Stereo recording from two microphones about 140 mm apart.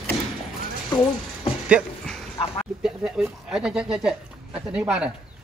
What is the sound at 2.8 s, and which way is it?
A woman's voice, 5° right (ahead or behind).